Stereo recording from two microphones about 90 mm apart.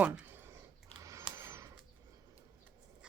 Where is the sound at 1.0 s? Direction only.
35° right (ahead or behind).